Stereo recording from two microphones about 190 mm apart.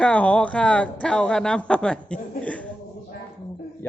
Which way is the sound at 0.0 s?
5° left (ahead or behind).